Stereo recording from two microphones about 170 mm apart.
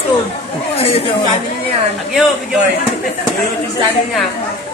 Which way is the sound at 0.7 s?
35° left (ahead or behind).